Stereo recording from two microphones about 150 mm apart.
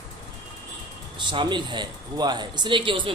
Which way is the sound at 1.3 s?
30° right (ahead or behind).